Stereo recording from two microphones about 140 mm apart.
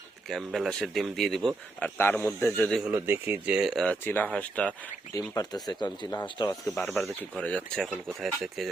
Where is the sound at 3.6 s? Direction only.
Centre (ahead or behind).